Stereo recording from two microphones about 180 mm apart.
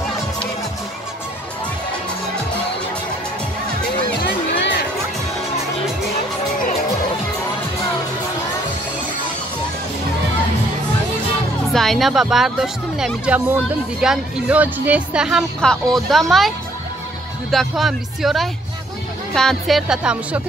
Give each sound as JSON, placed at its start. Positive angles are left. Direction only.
{"t": 4.2, "sound": "music", "side_deg": 70}
{"t": 11.7, "sound": "speech", "side_deg": 0}